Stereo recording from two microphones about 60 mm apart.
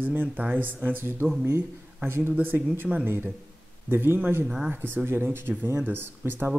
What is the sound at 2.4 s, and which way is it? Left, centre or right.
Speech, right.